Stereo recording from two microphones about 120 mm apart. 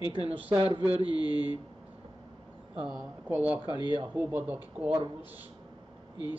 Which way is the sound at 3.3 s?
10° right (ahead or behind).